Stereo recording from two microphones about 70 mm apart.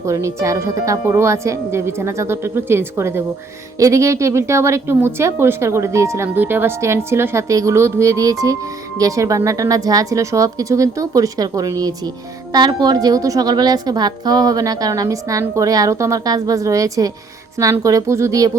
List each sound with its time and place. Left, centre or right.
0.0 s speech: right
1.0 s a woman's voice: right
1.3 s a woman's voice: right
3.8 s a woman's voice: right
6.2 s a woman's voice: right
12.5 s a woman's voice: right
13.5 s a woman's voice: right